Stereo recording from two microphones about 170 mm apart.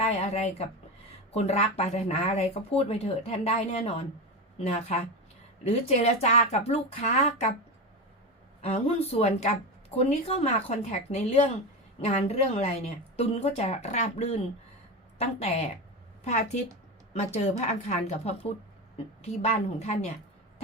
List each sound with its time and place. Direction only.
0.0 s speech: 40° left (ahead or behind)
8.6 s speech: 40° left (ahead or behind)
16.2 s a woman's voice: 45° left (ahead or behind)